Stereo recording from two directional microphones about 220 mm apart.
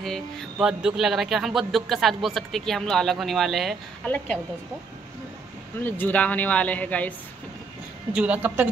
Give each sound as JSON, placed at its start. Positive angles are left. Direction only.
{"t": 0.0, "sound": "speech", "side_deg": 0}
{"t": 5.8, "sound": "speech", "side_deg": 10}
{"t": 8.1, "sound": "speech", "side_deg": -5}